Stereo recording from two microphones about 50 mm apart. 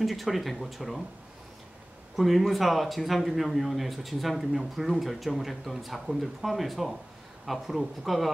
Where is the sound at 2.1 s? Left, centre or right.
Centre.